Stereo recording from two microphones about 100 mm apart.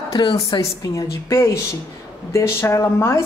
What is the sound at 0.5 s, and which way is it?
A woman's voice, 35° left (ahead or behind).